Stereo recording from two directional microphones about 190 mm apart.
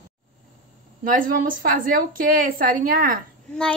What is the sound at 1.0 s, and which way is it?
A woman's voice, 45° right (ahead or behind).